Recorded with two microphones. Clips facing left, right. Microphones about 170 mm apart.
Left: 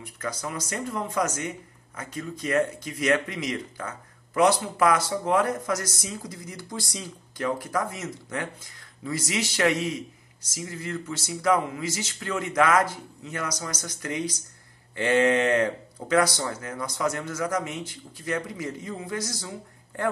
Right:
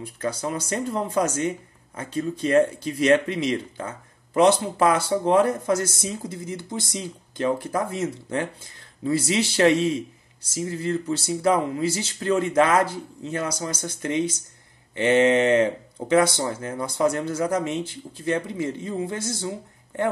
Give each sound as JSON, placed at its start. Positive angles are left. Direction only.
{"t": 0.0, "sound": "speech", "side_deg": -30}